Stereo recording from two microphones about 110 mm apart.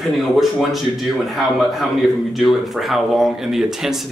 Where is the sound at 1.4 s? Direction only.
Centre (ahead or behind).